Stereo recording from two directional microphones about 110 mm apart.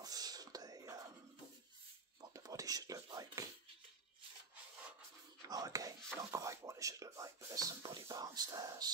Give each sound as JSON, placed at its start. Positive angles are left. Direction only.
{"t": 0.0, "sound": "whispering", "side_deg": -35}
{"t": 2.3, "sound": "a sound", "side_deg": -30}
{"t": 5.5, "sound": "whispering", "side_deg": -35}
{"t": 6.3, "sound": "speech", "side_deg": -30}